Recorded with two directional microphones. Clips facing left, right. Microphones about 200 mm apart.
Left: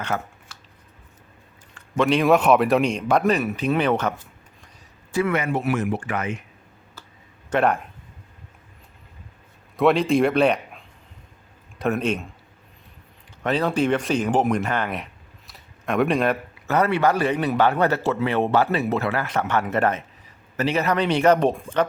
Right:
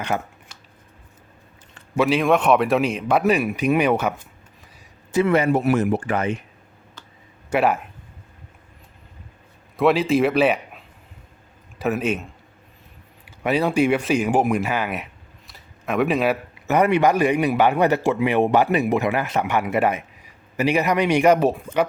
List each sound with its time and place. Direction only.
0.0 s a sound: 15° right (ahead or behind)
2.0 s speech: 5° right (ahead or behind)
5.1 s speech: 30° right (ahead or behind)
7.5 s speech: 5° right (ahead or behind)
9.7 s a man's voice: centre (ahead or behind)
16.6 s a man's voice: 15° right (ahead or behind)